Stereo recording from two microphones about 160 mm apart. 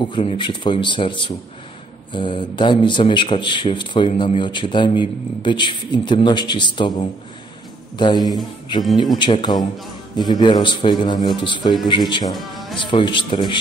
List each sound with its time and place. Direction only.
0.0 s speech: 35° left (ahead or behind)
12.4 s music: centre (ahead or behind)
12.8 s speech: 30° left (ahead or behind)